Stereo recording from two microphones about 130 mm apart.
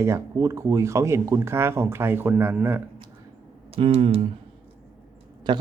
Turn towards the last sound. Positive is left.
turn(degrees=-35)  # may be behind; listen again after turning